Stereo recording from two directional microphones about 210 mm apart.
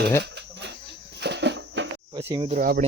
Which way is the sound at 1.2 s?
55° right (ahead or behind).